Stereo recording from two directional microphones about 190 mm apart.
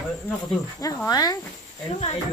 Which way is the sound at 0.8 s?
20° left (ahead or behind).